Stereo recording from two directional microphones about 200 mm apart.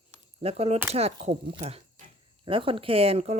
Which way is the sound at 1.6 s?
35° right (ahead or behind).